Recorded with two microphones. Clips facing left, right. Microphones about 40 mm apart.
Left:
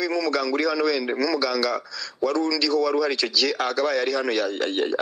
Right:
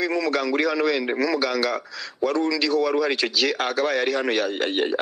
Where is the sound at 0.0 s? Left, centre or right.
Right.